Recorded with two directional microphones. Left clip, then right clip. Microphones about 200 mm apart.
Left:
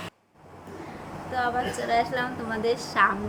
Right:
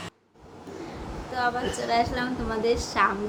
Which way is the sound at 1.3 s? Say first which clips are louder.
Even; 10° right (ahead or behind).